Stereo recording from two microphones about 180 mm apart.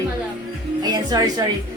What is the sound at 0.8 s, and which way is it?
Speech, 20° right (ahead or behind).